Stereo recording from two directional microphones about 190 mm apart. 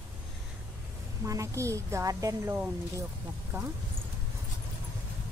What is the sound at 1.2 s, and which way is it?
A woman's voice, 15° right (ahead or behind).